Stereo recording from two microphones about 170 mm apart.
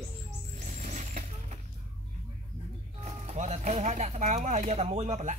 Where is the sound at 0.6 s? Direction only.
45° right (ahead or behind).